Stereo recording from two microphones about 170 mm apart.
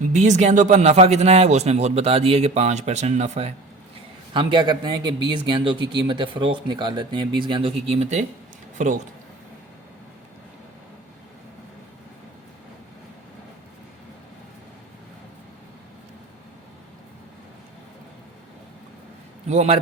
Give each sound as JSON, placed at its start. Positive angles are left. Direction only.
{"t": 0.1, "sound": "speech", "side_deg": -45}
{"t": 4.4, "sound": "a man's voice", "side_deg": -30}
{"t": 19.5, "sound": "speech", "side_deg": -40}